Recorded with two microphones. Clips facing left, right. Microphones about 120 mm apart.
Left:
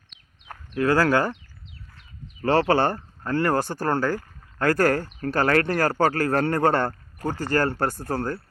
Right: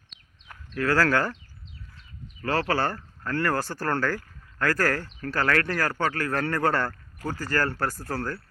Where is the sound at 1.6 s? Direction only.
60° left (ahead or behind).